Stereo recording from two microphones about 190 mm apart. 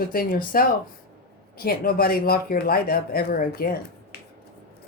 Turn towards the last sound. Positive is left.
turn(degrees=50)  # may be behind; listen again after turning